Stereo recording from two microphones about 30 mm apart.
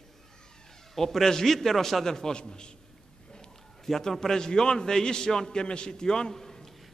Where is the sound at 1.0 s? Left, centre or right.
Centre.